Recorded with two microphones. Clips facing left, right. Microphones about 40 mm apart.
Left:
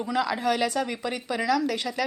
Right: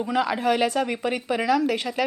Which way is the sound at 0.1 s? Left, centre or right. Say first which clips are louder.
Right 2 dB; right.